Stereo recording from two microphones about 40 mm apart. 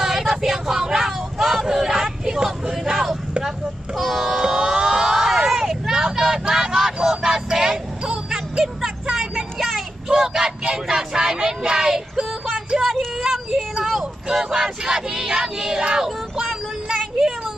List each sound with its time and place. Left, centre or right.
0.0 s vehicle: centre
3.4 s a sound: centre
5.5 s vehicle: centre
10.0 s child singing: centre
13.2 s a sound: centre
14.2 s child singing: centre